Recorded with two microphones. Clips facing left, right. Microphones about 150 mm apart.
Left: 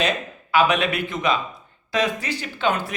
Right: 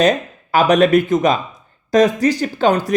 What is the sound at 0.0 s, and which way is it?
Speech, 45° right (ahead or behind).